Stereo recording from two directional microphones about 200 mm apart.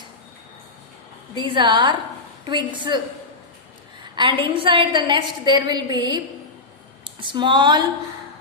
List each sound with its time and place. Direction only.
1.4 s a woman's voice: 25° right (ahead or behind)
4.1 s a woman's voice: 25° right (ahead or behind)